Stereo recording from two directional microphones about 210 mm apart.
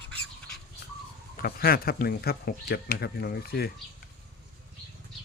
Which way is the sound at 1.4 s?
45° left (ahead or behind).